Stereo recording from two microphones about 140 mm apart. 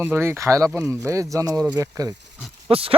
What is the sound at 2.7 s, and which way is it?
Speech, 40° right (ahead or behind).